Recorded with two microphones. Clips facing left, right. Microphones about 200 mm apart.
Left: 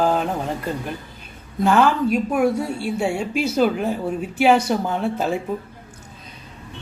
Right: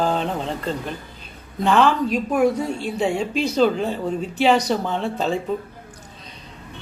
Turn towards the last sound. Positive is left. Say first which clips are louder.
# even
turn(degrees=10)  # may be behind; listen again after turning